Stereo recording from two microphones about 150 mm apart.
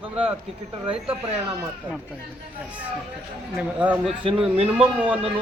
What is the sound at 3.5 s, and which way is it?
Speech, 10° right (ahead or behind).